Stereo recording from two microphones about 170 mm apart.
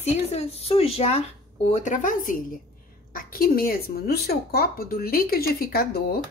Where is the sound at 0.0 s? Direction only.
40° left (ahead or behind); by 6.2 s 65° left (ahead or behind).